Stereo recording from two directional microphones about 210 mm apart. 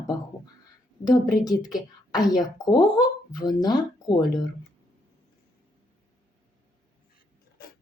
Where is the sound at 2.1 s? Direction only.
20° left (ahead or behind).